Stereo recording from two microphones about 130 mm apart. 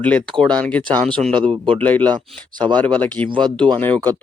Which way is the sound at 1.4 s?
45° right (ahead or behind).